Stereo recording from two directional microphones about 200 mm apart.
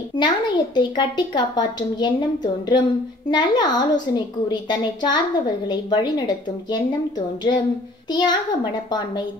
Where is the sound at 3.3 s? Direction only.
20° left (ahead or behind).